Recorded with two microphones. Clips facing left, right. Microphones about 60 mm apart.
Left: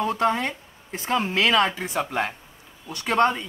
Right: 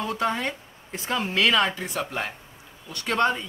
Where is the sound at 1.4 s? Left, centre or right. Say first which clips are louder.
Left 1 dB; centre.